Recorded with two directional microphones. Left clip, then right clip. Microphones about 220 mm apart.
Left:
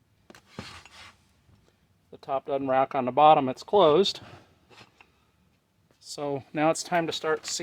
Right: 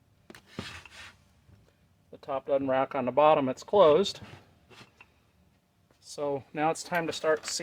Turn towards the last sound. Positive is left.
turn(degrees=35)  # may be behind; listen again after turning